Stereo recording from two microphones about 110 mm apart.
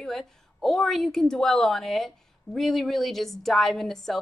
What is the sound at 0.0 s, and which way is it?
A woman's voice, 5° left (ahead or behind).